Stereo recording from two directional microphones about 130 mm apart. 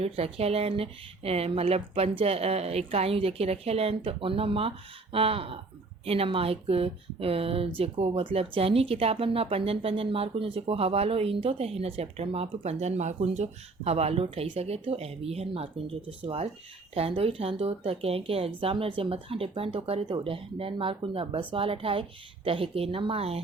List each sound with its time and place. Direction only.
0.0 s speech: 50° right (ahead or behind)